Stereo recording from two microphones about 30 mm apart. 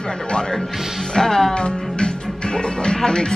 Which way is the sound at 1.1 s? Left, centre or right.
Centre.